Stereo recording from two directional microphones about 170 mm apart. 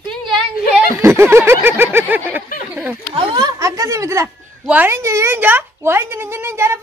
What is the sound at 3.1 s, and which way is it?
A woman's voice, 30° right (ahead or behind).